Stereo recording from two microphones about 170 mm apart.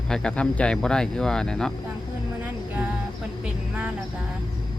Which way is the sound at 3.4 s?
5° right (ahead or behind).